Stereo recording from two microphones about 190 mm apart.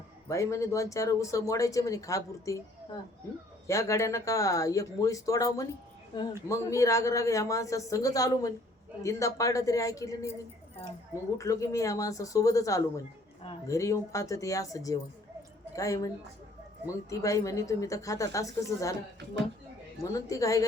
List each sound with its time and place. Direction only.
0.3 s a woman's voice: 15° left (ahead or behind)
3.7 s a woman's voice: 15° left (ahead or behind)
11.3 s a woman's voice: 15° left (ahead or behind)